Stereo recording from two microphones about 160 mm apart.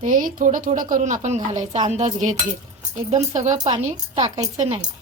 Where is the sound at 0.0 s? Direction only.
60° right (ahead or behind).